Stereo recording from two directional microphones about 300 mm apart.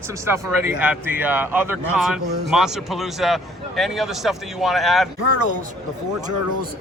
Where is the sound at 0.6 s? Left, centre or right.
Centre.